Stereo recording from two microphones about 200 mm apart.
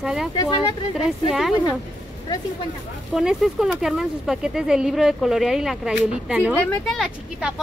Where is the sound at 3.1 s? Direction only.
Centre (ahead or behind).